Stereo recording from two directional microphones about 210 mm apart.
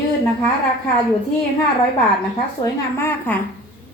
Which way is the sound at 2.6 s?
10° left (ahead or behind).